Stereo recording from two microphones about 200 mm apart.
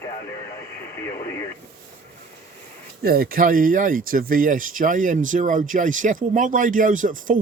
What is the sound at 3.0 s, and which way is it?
Speech, 50° right (ahead or behind).